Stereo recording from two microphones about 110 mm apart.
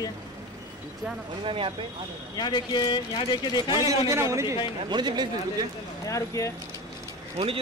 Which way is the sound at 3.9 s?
30° right (ahead or behind).